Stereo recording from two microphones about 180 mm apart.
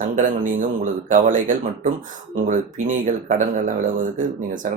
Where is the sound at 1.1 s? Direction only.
45° right (ahead or behind).